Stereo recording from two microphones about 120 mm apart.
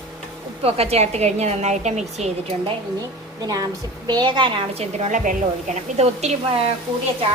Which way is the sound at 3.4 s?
35° right (ahead or behind).